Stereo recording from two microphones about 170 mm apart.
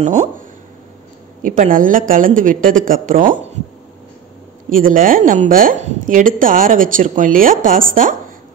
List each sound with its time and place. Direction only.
0.0 s a woman's voice: 45° right (ahead or behind)
1.4 s a woman's voice: 50° right (ahead or behind)
4.6 s a woman's voice: 55° right (ahead or behind)